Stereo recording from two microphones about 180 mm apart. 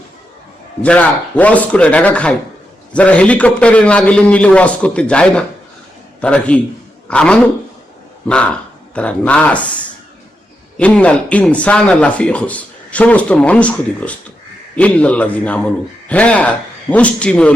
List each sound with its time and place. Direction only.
0.8 s speech: 10° left (ahead or behind)